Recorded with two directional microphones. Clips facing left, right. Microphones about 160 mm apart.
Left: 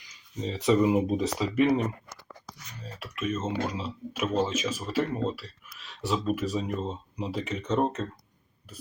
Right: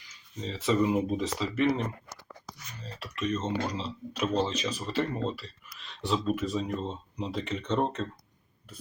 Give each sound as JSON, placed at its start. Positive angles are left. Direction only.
{"t": 0.4, "sound": "speech", "side_deg": 15}
{"t": 2.8, "sound": "speech", "side_deg": 5}